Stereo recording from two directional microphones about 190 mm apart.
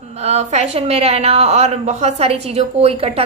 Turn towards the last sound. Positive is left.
turn(degrees=-30)  # may be behind; listen again after turning